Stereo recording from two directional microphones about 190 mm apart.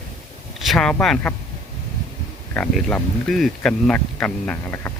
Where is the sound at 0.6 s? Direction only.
Centre (ahead or behind).